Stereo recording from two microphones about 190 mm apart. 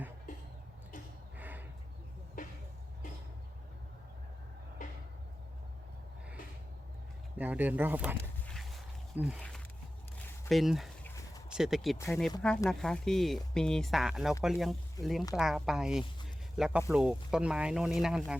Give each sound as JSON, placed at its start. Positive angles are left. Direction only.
{"t": 1.4, "sound": "a sound", "side_deg": -10}
{"t": 7.3, "sound": "speech", "side_deg": -10}
{"t": 8.4, "sound": "walk", "side_deg": 0}
{"t": 9.1, "sound": "speech", "side_deg": -5}
{"t": 10.5, "sound": "speech", "side_deg": 0}
{"t": 15.0, "sound": "speech", "side_deg": 15}
{"t": 15.4, "sound": "speech", "side_deg": 0}